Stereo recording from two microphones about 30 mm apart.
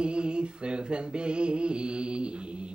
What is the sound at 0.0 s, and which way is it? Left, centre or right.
Music, right.